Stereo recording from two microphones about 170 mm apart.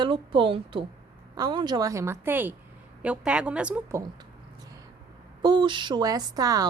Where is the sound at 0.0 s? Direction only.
30° right (ahead or behind).